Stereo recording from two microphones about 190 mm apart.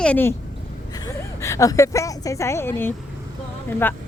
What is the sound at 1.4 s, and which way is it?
Speech, 15° left (ahead or behind).